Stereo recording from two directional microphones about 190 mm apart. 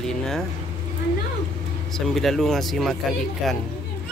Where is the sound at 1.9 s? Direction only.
Centre (ahead or behind).